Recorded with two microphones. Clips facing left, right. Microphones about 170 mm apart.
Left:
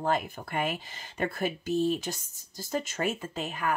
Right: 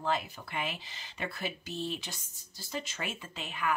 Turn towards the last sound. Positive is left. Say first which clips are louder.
# left 3 dB
turn(degrees=45)  # may be behind; listen again after turning